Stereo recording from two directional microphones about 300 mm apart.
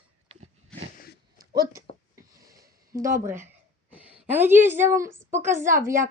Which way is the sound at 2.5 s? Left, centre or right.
Centre.